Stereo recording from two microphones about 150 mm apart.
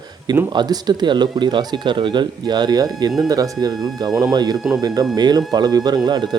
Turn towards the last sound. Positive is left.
turn(degrees=-30)  # may be behind; listen again after turning